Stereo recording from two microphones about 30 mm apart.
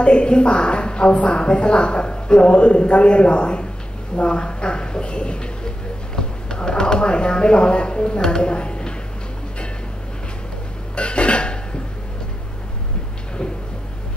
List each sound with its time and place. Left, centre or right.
0.0 s a woman's voice: left
6.1 s a sound: left
7.1 s a woman's voice: left
11.0 s cough: left